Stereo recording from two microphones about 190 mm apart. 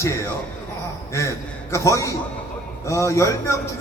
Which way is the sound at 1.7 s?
15° left (ahead or behind).